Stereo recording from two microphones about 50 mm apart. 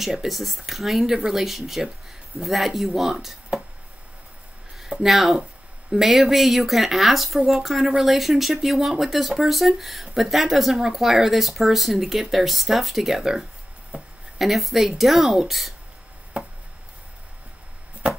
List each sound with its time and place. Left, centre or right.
0.0 s speech: centre
4.7 s a sound: centre
5.1 s speech: centre
13.9 s speech: right
14.4 s speech: centre